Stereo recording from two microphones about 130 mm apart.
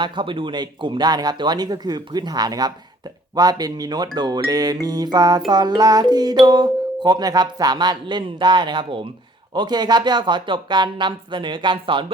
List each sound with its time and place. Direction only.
0.0 s speech: 40° right (ahead or behind)